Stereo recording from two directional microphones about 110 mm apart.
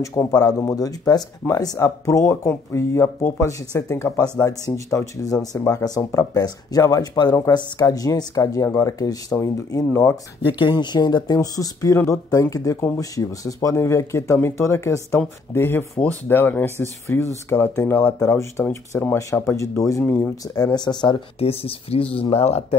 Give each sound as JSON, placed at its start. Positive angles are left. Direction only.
{"t": 0.3, "sound": "speech", "side_deg": 35}
{"t": 10.6, "sound": "speech", "side_deg": 40}
{"t": 21.4, "sound": "speech", "side_deg": 60}